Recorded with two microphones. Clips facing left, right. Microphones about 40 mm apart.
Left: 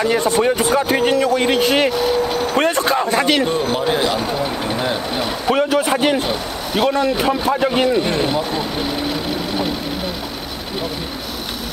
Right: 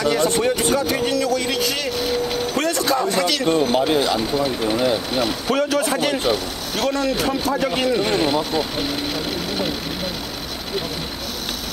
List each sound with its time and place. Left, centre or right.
0.2 s a man's voice: left
0.7 s speech: left
1.9 s vehicle: centre
2.4 s vehicle: left
3.9 s speech: left
4.2 s a man's voice: centre
7.9 s speech: centre